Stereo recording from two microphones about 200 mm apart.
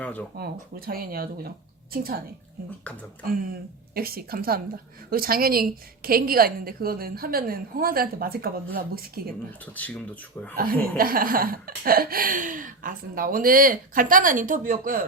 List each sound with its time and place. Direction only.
0.0 s speech: 5° left (ahead or behind)
0.3 s speech: 50° right (ahead or behind)
3.2 s speech: 45° right (ahead or behind)
9.7 s speech: 5° left (ahead or behind)
10.6 s speech: 45° right (ahead or behind)